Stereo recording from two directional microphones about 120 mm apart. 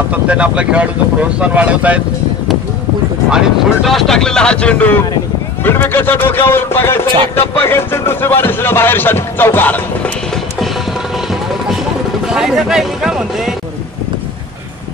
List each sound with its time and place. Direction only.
0.1 s speech: 10° right (ahead or behind)
3.3 s speech: centre (ahead or behind); by 10.1 s 15° left (ahead or behind)
12.3 s speech: 5° right (ahead or behind)